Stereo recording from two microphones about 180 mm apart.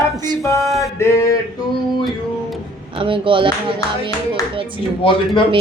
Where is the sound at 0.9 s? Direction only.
15° left (ahead or behind).